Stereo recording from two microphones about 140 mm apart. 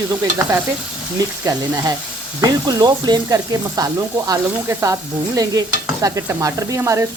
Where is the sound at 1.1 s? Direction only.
25° right (ahead or behind).